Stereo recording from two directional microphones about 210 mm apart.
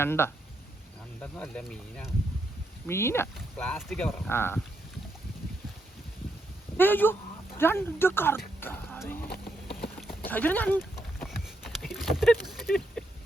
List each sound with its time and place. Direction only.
0.0 s speech: 10° left (ahead or behind)
6.7 s speech: 10° left (ahead or behind)
10.2 s speech: 10° left (ahead or behind)
10.8 s clip-clop: centre (ahead or behind)